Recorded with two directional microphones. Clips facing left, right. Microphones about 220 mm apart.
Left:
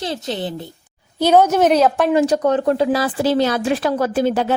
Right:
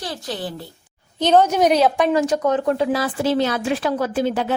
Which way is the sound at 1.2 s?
10° left (ahead or behind).